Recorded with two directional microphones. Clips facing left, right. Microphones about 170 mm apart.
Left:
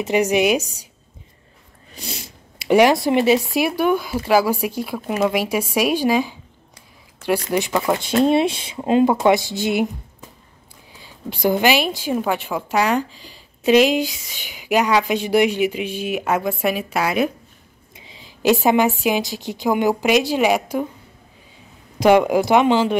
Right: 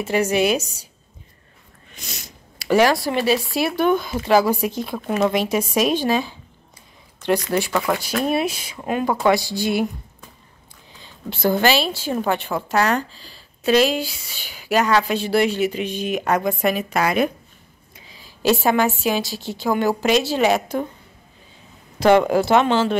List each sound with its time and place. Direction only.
0.0 s a woman's voice: 15° left (ahead or behind)
2.0 s a sound: 30° left (ahead or behind)
2.7 s a woman's voice: 20° left (ahead or behind)
7.4 s speech: 15° left (ahead or behind)
11.0 s a woman's voice: 15° left (ahead or behind)
17.9 s a woman's voice: 25° left (ahead or behind)
22.0 s a woman's voice: 10° left (ahead or behind)